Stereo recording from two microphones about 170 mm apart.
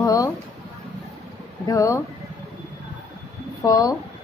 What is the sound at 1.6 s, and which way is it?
Speech, 20° left (ahead or behind).